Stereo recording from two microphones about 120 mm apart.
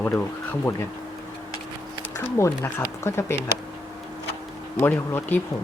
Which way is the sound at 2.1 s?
20° left (ahead or behind).